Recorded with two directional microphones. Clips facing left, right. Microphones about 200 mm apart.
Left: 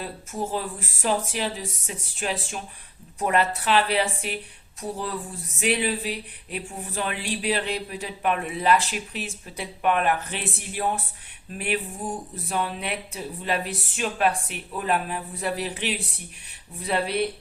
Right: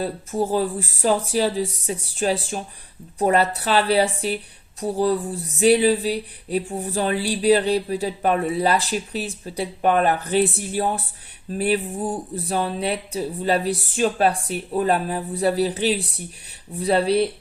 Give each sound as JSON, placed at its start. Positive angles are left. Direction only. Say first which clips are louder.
{"t": 0.0, "sound": "speech", "louder": "right 7 dB", "side_deg": -35}